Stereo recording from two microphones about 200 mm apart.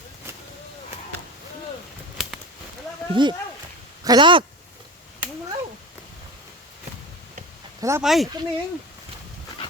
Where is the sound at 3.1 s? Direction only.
25° right (ahead or behind).